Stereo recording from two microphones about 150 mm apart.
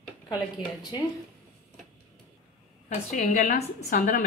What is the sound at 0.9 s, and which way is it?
Speech, 30° left (ahead or behind).